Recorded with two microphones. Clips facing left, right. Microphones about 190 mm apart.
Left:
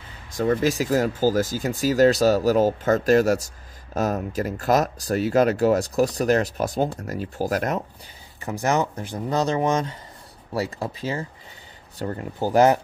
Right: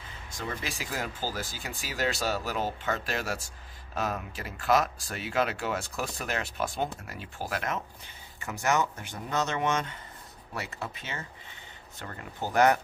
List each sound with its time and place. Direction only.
0.4 s speech: 40° left (ahead or behind)